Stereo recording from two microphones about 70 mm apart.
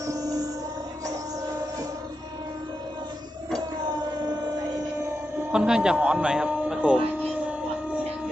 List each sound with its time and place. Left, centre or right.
0.0 s music: right
5.5 s speech: centre